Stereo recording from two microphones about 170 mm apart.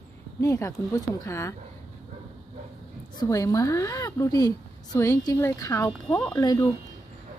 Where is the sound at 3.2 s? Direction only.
20° left (ahead or behind).